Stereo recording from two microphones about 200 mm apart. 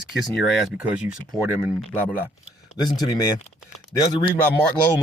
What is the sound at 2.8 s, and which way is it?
Speech, 20° left (ahead or behind).